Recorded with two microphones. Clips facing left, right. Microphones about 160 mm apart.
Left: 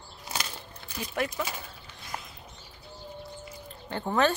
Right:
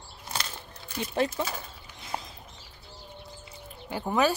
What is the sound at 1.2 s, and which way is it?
Speech, 30° right (ahead or behind).